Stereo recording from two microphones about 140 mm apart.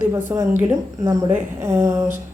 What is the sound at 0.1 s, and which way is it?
A woman's voice, 20° right (ahead or behind).